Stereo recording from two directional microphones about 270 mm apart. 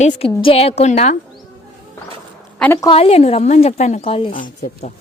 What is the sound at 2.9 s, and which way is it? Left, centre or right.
A woman's voice, left.